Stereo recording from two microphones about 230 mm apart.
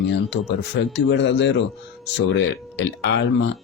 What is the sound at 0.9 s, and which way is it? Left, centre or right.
Speech, left.